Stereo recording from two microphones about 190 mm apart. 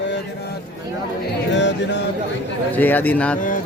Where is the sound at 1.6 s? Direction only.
70° left (ahead or behind).